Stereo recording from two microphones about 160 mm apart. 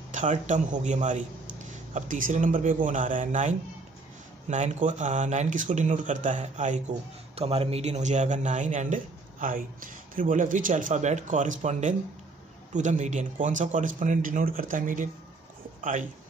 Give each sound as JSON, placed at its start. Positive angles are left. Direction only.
{"t": 0.1, "sound": "a man's voice", "side_deg": -50}
{"t": 7.3, "sound": "a man's voice", "side_deg": -35}